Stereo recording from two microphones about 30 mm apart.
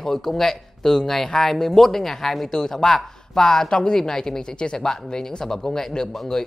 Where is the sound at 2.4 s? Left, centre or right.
Centre.